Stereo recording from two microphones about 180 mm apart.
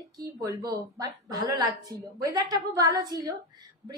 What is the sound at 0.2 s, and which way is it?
A woman's voice, 20° right (ahead or behind).